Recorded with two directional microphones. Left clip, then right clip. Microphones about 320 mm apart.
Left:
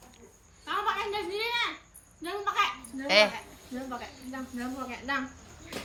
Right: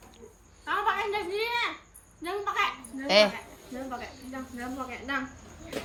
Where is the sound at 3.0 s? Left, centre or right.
Centre.